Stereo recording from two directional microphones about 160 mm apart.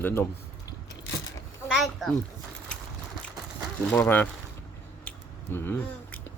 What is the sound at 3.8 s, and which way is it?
Speech, 10° left (ahead or behind).